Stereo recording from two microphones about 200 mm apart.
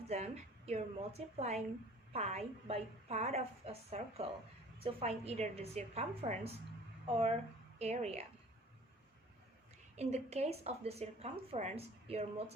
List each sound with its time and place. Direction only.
0.1 s a woman's voice: 35° right (ahead or behind)
7.8 s a woman's voice: 30° right (ahead or behind)
9.9 s a woman's voice: 35° right (ahead or behind)